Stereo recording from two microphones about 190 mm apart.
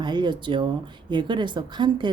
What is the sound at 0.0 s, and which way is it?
Speech, 25° right (ahead or behind).